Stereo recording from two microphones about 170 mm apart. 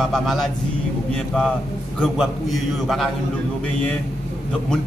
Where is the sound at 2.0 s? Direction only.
Centre (ahead or behind).